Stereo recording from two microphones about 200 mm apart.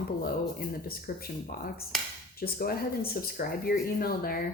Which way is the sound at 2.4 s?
50° left (ahead or behind).